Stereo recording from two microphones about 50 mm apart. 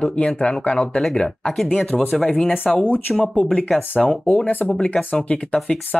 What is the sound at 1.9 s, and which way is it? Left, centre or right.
Speech, centre.